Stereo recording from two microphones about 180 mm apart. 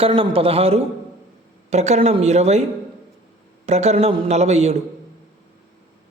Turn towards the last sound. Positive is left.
turn(degrees=-35)  # may be behind; listen again after turning